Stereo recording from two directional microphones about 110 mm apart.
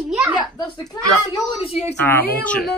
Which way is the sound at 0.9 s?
35° left (ahead or behind).